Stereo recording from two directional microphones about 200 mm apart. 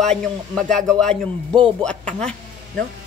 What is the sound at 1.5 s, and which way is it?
Speech, 20° right (ahead or behind).